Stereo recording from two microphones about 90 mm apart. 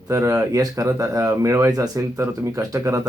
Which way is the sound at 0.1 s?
35° right (ahead or behind).